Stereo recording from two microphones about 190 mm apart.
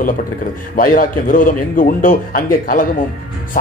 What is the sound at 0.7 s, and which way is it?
Speech, 45° left (ahead or behind).